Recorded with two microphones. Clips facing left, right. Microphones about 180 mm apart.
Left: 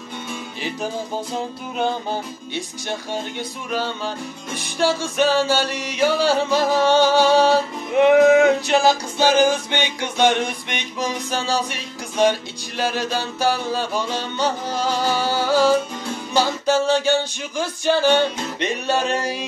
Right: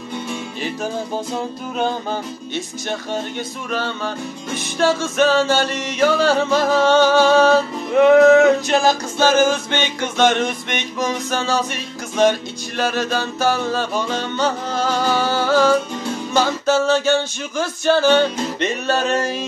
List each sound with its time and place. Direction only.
2.5 s music: 15° left (ahead or behind)